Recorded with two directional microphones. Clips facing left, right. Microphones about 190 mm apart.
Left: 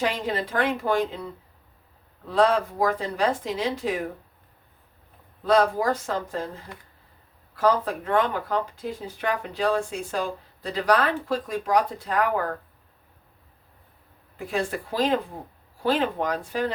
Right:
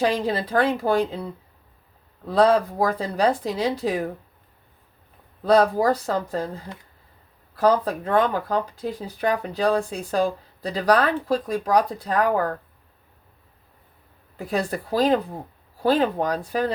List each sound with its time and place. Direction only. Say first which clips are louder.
0.0 s speech: right 4 dB; 35° right (ahead or behind)
2.3 s speech: right 3 dB; 40° right (ahead or behind)
5.5 s speech: right 3 dB; 35° right (ahead or behind)
7.5 s speech: right 3 dB; 35° right (ahead or behind)
14.3 s speech: right 2 dB; 40° right (ahead or behind)